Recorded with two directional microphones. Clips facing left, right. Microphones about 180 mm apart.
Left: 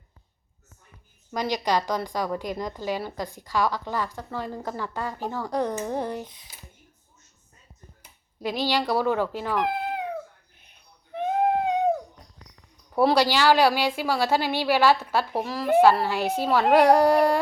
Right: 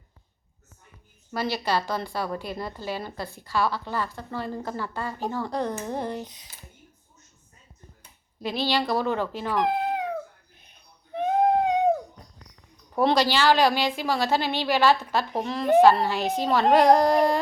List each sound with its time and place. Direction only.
1.3 s a woman's voice: 15° left (ahead or behind)
8.4 s a woman's voice: 10° left (ahead or behind)
9.6 s cat: 20° right (ahead or behind)
12.9 s a woman's voice: 10° left (ahead or behind)